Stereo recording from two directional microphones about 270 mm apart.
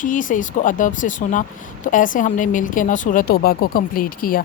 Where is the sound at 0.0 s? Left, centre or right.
Left.